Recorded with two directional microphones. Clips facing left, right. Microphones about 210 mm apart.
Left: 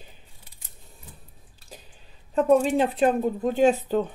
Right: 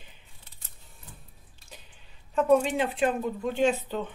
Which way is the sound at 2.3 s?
35° left (ahead or behind).